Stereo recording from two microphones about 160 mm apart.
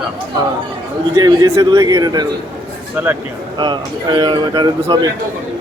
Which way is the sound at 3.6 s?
30° right (ahead or behind).